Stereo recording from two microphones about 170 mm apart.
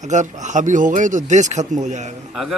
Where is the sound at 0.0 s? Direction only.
45° right (ahead or behind).